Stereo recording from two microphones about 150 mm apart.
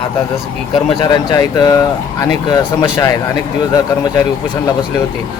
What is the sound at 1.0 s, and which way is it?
Speech, 25° left (ahead or behind).